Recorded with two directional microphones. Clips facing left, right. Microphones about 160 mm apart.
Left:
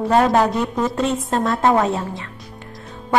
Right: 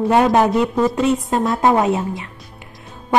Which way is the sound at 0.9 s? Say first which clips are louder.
Right 3 dB; centre (ahead or behind).